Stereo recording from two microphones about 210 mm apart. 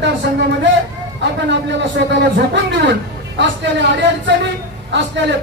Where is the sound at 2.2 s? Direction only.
55° right (ahead or behind).